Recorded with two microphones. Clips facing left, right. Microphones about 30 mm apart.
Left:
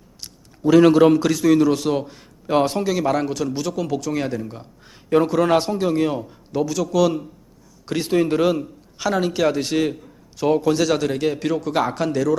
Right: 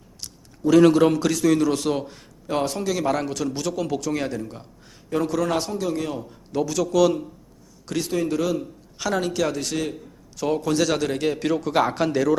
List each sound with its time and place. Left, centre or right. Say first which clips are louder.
0.2 s a man's voice: left 1 dB; centre
2.5 s a man's voice: left 5 dB; left
2.9 s a man's voice: left 3 dB; centre
4.9 s a man's voice: left 6 dB; left
6.5 s a man's voice: left 1 dB; centre
7.9 s a man's voice: left 5 dB; left
9.0 s a man's voice: left 3 dB; centre